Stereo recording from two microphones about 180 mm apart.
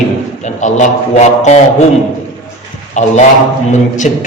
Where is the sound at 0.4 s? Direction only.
40° left (ahead or behind).